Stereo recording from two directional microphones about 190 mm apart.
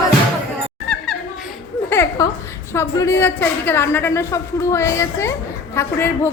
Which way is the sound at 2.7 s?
15° left (ahead or behind).